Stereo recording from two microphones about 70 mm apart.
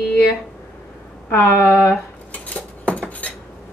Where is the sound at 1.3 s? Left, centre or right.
Left.